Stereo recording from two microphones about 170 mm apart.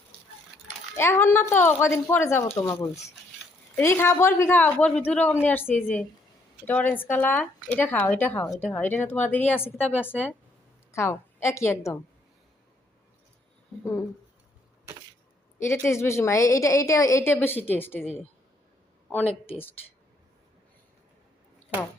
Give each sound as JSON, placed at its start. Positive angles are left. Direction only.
{"t": 0.9, "sound": "speech", "side_deg": 15}
{"t": 3.8, "sound": "a woman's voice", "side_deg": 15}
{"t": 15.5, "sound": "speech", "side_deg": 15}
{"t": 19.5, "sound": "speech", "side_deg": 10}